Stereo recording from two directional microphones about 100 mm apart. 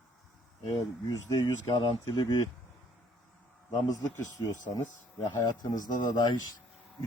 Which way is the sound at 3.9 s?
35° left (ahead or behind).